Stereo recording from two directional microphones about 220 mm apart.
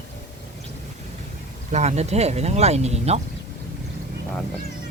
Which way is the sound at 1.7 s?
30° right (ahead or behind).